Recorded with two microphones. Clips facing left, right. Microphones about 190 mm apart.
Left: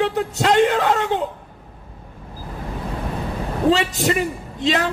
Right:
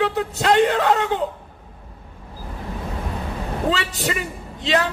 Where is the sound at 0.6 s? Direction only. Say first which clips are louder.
Left 1 dB; 40° right (ahead or behind).